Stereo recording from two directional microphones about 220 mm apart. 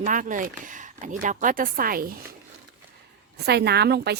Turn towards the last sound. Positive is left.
turn(degrees=-50)  # may be behind; listen again after turning